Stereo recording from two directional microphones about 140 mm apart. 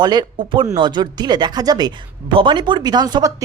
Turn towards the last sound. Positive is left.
turn(degrees=-30)  # may be behind; listen again after turning